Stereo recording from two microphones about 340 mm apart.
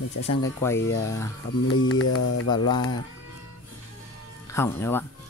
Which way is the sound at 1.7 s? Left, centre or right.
Left.